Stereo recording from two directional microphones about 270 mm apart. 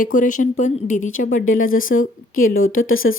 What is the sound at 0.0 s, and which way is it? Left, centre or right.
Speech, left.